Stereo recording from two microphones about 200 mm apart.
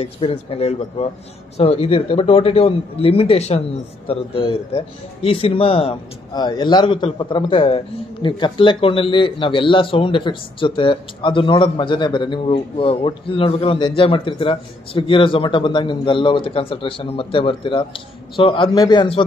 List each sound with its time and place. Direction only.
0.0 s speech: 30° left (ahead or behind)